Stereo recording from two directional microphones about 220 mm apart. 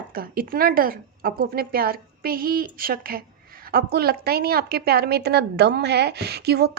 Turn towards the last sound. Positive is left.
turn(degrees=-45)  # may be behind; listen again after turning